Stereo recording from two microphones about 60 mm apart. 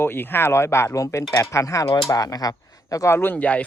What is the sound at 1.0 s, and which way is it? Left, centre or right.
Speech, left.